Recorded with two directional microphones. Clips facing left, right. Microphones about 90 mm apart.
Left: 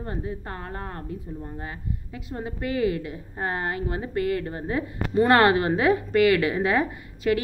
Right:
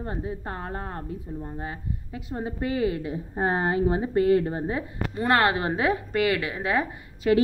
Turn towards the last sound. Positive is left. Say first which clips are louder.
# right 1 dB
turn(degrees=-25)  # may be behind; listen again after turning